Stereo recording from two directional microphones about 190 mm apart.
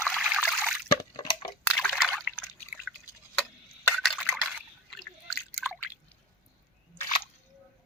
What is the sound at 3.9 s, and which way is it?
Liquid, centre (ahead or behind).